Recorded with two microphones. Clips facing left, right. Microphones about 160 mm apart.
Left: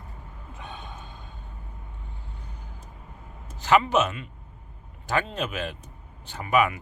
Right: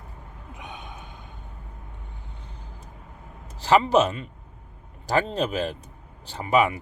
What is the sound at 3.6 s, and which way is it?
Speech, 35° right (ahead or behind).